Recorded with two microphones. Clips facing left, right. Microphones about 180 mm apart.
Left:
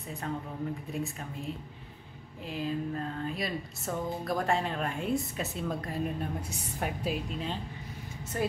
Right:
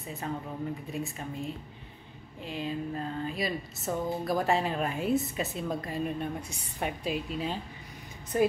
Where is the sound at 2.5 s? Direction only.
Centre (ahead or behind).